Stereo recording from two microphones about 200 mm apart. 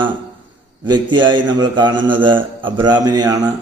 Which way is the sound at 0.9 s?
25° right (ahead or behind).